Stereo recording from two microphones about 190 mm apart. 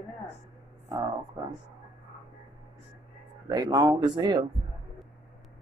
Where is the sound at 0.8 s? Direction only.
25° right (ahead or behind).